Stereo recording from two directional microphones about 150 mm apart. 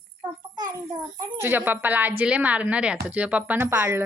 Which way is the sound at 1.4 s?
15° right (ahead or behind).